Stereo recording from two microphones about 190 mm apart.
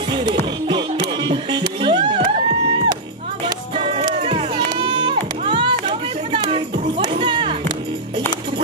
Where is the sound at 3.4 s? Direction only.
30° right (ahead or behind).